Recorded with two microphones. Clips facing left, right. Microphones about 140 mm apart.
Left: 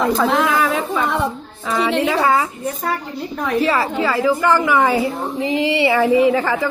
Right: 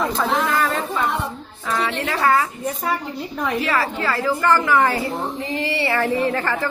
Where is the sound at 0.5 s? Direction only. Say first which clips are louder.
Left 3 dB; 5° left (ahead or behind).